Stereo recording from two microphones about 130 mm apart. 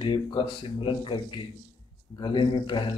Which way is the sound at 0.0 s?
40° left (ahead or behind).